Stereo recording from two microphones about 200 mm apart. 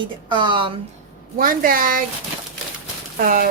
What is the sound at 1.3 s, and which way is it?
Speech, 45° right (ahead or behind).